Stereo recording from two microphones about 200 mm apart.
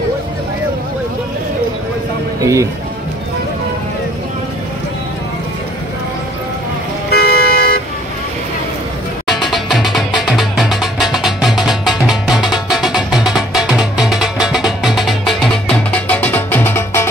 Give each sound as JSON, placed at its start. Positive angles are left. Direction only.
{"t": 2.4, "sound": "speech", "side_deg": -15}
{"t": 7.1, "sound": "vehicle", "side_deg": 50}
{"t": 9.3, "sound": "music", "side_deg": 0}